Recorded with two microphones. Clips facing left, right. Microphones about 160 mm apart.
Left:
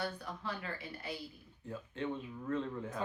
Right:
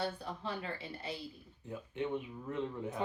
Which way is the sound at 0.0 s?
25° right (ahead or behind).